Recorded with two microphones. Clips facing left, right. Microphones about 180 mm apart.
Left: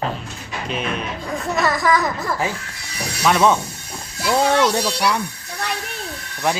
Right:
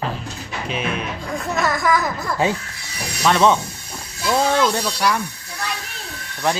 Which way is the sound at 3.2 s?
10° left (ahead or behind).